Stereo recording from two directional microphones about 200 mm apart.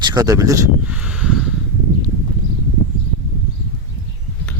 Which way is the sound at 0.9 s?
5° right (ahead or behind).